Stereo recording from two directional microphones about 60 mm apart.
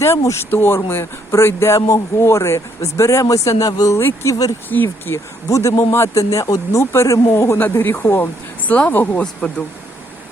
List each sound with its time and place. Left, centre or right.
0.0 s speech: left
3.2 s speech: left
4.7 s speech: left
5.5 s speech: left
6.1 s speech: left
6.9 s speech: left